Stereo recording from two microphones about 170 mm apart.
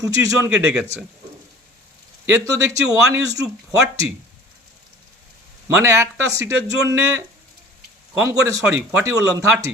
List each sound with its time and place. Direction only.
0.0 s a man's voice: 20° right (ahead or behind)
0.5 s speech: 5° right (ahead or behind)
2.2 s a man's voice: 15° right (ahead or behind)
5.6 s a man's voice: 15° right (ahead or behind)
8.2 s a man's voice: 20° right (ahead or behind)